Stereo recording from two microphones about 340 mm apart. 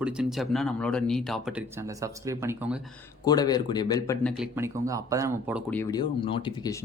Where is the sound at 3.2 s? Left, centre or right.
Centre.